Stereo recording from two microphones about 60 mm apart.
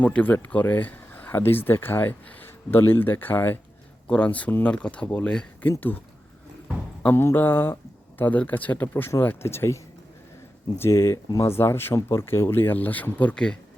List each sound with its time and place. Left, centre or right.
0.0 s speech: left
4.0 s speech: left
7.1 s speech: left
8.2 s speech: left
13.3 s speech: centre